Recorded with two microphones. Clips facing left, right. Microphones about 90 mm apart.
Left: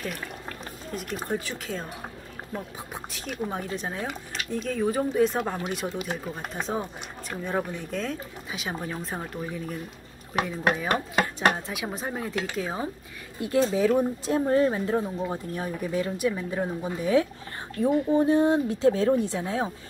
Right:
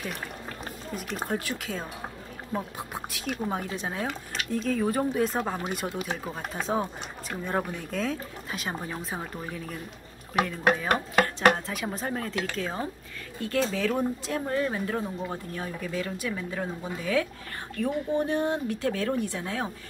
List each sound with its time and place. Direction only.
0.9 s speech: centre (ahead or behind)
11.3 s speech: 5° left (ahead or behind)
14.5 s speech: 30° left (ahead or behind)